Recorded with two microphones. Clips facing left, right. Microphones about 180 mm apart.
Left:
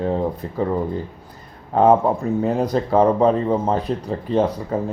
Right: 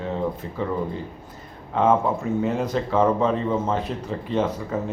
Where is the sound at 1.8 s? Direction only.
35° left (ahead or behind).